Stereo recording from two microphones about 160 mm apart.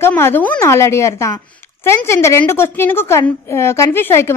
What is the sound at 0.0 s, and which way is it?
A woman's voice, 15° left (ahead or behind).